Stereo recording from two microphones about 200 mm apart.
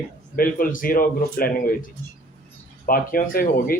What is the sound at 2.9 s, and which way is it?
Speech, 45° left (ahead or behind).